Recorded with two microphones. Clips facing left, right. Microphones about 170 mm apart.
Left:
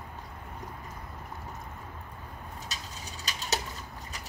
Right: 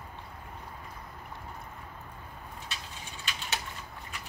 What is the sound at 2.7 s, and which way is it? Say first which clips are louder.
Bird: left 1 dB; 40° left (ahead or behind).